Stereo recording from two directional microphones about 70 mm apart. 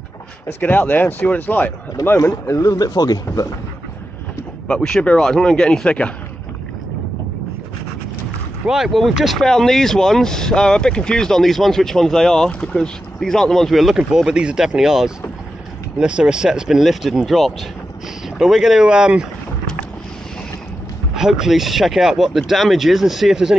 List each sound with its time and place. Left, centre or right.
0.6 s speech: left
2.1 s speech: left
4.6 s speech: centre
8.6 s speech: centre
13.9 s speech: centre
19.6 s boat: centre
21.1 s speech: centre